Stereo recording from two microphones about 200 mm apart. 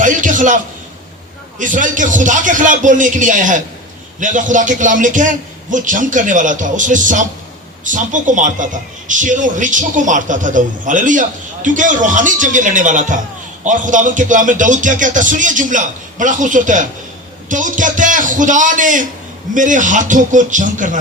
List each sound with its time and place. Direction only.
0.0 s a man's voice: 40° right (ahead or behind)